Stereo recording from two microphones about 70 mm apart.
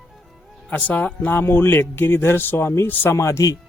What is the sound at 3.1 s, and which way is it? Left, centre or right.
Speech, left.